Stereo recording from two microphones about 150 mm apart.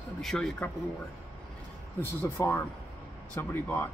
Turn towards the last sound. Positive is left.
turn(degrees=10)  # may be behind; listen again after turning